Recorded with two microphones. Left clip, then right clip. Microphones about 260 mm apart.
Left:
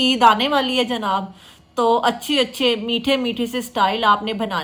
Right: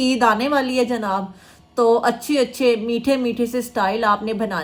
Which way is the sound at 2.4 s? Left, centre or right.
Left.